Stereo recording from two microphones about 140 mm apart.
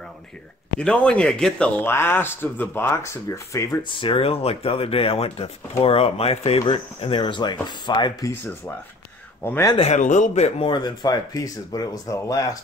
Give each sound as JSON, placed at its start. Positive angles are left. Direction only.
{"t": 0.7, "sound": "speech", "side_deg": 5}
{"t": 3.8, "sound": "speech", "side_deg": 35}
{"t": 9.4, "sound": "speech", "side_deg": 15}
{"t": 9.8, "sound": "speech", "side_deg": 55}
{"t": 10.7, "sound": "speech", "side_deg": 30}